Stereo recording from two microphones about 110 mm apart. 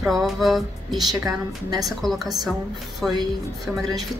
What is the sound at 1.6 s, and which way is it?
Music, 35° right (ahead or behind).